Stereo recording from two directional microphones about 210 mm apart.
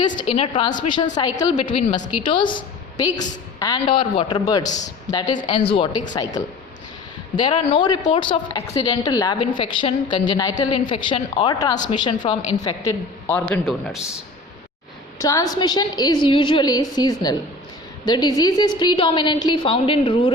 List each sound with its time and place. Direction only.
0.2 s a woman's voice: 25° left (ahead or behind)
4.6 s a man's voice: 35° left (ahead or behind)
6.4 s a woman's voice: 20° left (ahead or behind); by 14.2 s centre (ahead or behind)
15.2 s a woman's voice: 15° left (ahead or behind)